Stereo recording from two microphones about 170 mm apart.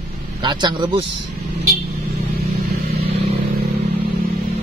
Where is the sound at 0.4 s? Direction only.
25° right (ahead or behind).